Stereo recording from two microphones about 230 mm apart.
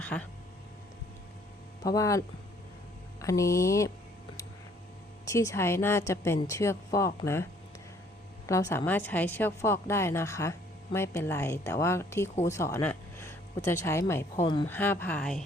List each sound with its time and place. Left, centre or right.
0.0 s speech: centre
1.8 s a woman's voice: centre
5.2 s a woman's voice: centre
8.4 s a woman's voice: centre
14.7 s a woman's voice: centre